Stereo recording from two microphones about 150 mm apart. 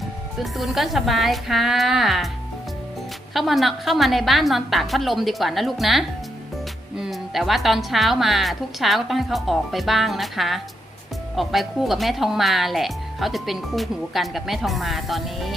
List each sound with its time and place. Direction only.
0.3 s speech: centre (ahead or behind)
3.3 s speech: centre (ahead or behind)